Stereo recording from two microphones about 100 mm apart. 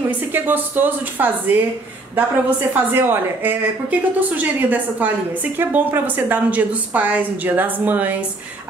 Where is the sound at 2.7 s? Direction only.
20° right (ahead or behind).